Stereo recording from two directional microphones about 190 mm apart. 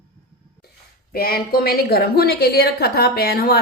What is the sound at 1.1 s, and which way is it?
A woman's voice, 50° left (ahead or behind).